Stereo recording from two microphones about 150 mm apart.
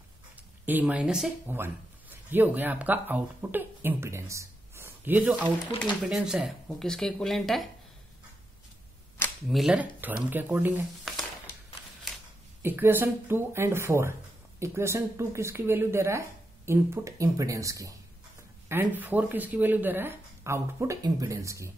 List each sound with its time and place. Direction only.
0.4 s speech: 10° right (ahead or behind)
9.5 s speech: centre (ahead or behind)
11.1 s a sound: centre (ahead or behind)
12.6 s speech: 15° right (ahead or behind)